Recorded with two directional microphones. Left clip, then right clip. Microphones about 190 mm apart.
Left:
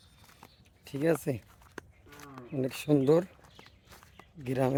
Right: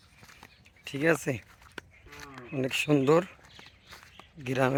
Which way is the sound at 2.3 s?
Centre (ahead or behind).